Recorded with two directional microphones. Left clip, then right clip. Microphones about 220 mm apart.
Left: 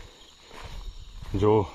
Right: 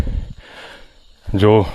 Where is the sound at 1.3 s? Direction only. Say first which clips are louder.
Right 9 dB; 50° right (ahead or behind).